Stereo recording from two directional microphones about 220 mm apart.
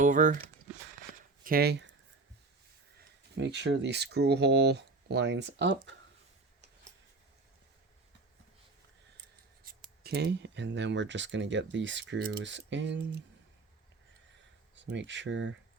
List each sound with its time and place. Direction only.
0.0 s speech: 35° right (ahead or behind)
1.5 s speech: 45° right (ahead or behind)
3.3 s speech: 50° right (ahead or behind)
9.6 s speech: 45° right (ahead or behind)
14.8 s speech: 55° right (ahead or behind)